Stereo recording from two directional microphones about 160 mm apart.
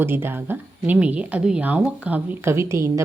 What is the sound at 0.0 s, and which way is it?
A woman's voice, 15° right (ahead or behind).